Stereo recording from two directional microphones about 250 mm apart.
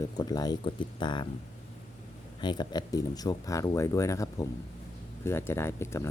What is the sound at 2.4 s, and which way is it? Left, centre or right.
Speech, centre.